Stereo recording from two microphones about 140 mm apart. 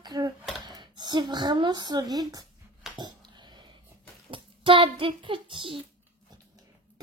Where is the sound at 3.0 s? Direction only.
35° right (ahead or behind).